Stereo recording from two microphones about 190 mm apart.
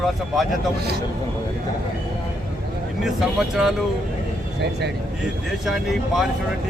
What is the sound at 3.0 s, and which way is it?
Speech, centre (ahead or behind).